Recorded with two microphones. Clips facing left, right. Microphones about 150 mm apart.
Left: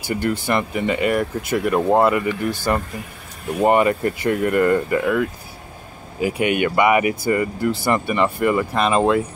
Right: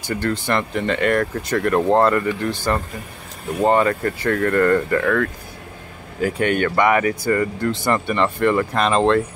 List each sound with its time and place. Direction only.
0.1 s speech: 10° left (ahead or behind)
3.6 s speech: 15° left (ahead or behind)